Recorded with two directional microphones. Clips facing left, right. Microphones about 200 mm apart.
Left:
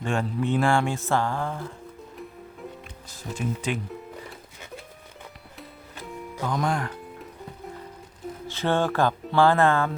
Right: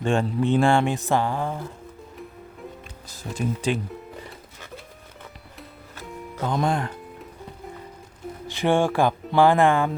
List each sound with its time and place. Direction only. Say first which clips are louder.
0.0 s mantra: right 4 dB; 25° right (ahead or behind)
3.3 s speech: right 4 dB; 35° right (ahead or behind)
6.5 s mantra: right 3 dB; 25° right (ahead or behind)
8.4 s speech: right 3 dB; 15° right (ahead or behind)